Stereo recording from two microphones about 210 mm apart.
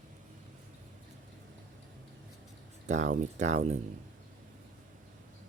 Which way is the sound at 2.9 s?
35° right (ahead or behind).